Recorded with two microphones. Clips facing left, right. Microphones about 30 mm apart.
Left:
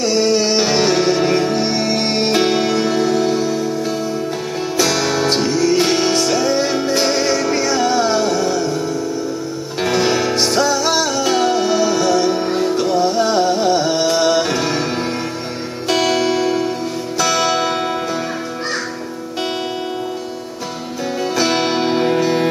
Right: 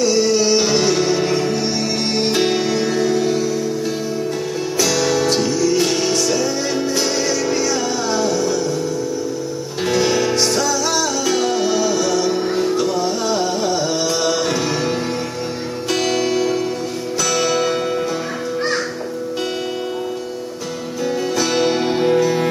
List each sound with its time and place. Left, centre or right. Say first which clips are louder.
0.0 s music: even; left
4.7 s music: left 1 dB; left
9.8 s music: even; centre
12.7 s music: left 3 dB; left
15.9 s music: left 3 dB; left
21.4 s music: left 1 dB; left